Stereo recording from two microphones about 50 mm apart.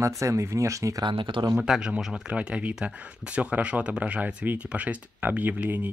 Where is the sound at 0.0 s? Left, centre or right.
Right.